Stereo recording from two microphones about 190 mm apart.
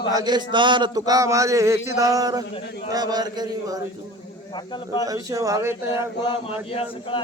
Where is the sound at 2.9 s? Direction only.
20° right (ahead or behind).